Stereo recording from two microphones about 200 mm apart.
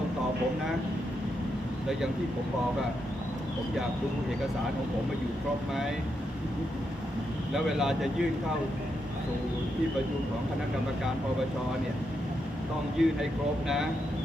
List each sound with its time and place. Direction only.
7.5 s speech: centre (ahead or behind)
13.0 s speech: centre (ahead or behind)